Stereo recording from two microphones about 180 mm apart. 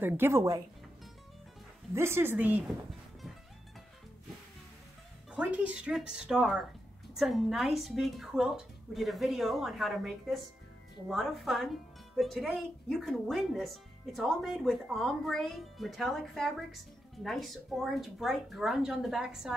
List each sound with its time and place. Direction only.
0.0 s speech: 15° right (ahead or behind)
2.0 s speech: 15° right (ahead or behind)
5.3 s speech: 5° right (ahead or behind)